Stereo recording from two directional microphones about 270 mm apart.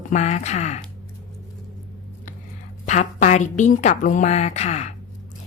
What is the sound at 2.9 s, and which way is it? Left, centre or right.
A woman's voice, left.